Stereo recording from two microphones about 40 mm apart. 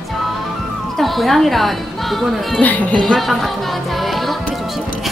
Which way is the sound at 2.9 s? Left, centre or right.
Centre.